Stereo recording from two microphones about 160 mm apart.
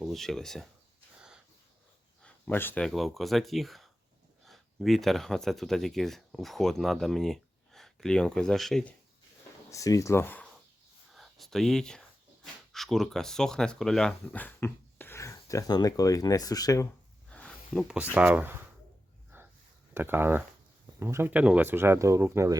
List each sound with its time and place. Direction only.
0.0 s speech: centre (ahead or behind)
2.2 s speech: 10° left (ahead or behind)
9.6 s speech: 20° left (ahead or behind)
17.2 s a sound: 5° left (ahead or behind)
17.8 s speech: 10° right (ahead or behind)
19.3 s a sound: 15° right (ahead or behind)
19.9 s speech: 15° right (ahead or behind)